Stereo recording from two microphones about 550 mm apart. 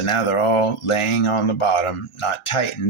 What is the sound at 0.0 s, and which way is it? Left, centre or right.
Speech, left.